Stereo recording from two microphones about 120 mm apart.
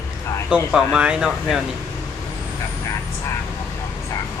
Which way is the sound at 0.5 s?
5° right (ahead or behind).